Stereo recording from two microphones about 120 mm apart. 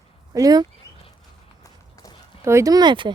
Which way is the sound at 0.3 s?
30° right (ahead or behind).